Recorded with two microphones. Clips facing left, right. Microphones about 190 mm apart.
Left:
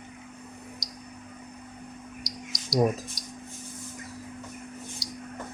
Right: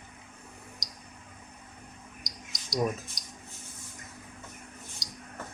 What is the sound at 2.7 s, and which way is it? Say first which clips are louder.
Speech: left 5 dB; 35° left (ahead or behind).